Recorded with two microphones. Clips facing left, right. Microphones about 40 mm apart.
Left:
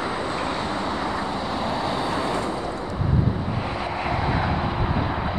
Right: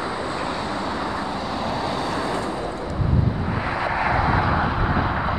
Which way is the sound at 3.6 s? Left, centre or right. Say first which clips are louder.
Right 7 dB; right.